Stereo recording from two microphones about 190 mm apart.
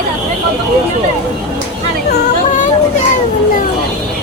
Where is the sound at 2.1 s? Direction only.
50° left (ahead or behind).